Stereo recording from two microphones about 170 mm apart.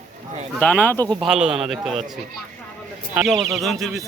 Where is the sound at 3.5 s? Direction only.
Centre (ahead or behind).